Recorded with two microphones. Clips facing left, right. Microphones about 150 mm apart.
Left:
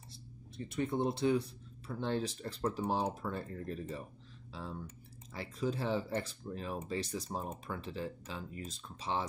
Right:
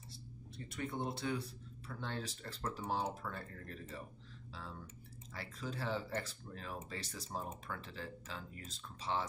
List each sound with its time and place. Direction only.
0.7 s speech: 25° left (ahead or behind)